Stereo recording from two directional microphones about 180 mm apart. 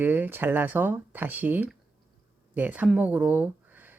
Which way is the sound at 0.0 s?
10° right (ahead or behind).